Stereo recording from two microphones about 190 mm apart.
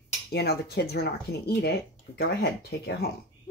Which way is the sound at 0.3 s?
60° left (ahead or behind).